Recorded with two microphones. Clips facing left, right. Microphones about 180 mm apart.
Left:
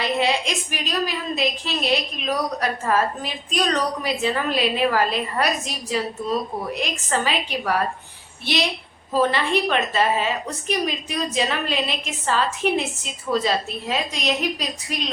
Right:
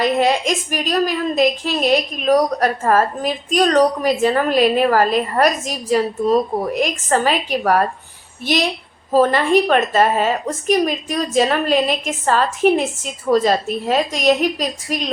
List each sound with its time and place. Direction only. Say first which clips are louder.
0.0 s a woman's voice: right 6 dB; 45° right (ahead or behind)
9.1 s a woman's voice: right 7 dB; 45° right (ahead or behind)